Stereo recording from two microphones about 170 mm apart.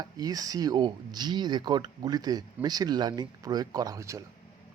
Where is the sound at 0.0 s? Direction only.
25° right (ahead or behind).